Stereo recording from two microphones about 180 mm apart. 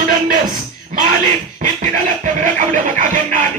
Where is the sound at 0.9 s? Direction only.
45° right (ahead or behind).